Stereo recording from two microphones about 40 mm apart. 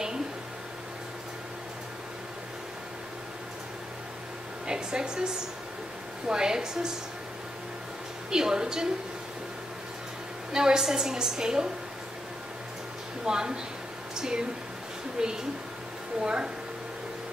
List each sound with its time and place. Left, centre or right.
4.6 s a woman's voice: centre
8.3 s a woman's voice: centre
10.5 s a woman's voice: centre
13.2 s a woman's voice: centre